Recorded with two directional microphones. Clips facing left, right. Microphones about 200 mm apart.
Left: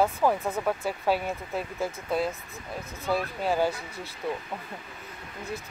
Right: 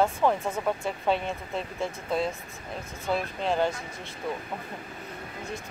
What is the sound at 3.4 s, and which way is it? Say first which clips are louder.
Speech: even; 5° left (ahead or behind).